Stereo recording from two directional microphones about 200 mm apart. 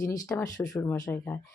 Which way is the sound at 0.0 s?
15° left (ahead or behind).